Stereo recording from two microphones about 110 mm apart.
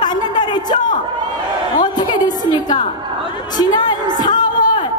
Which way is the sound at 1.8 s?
40° left (ahead or behind).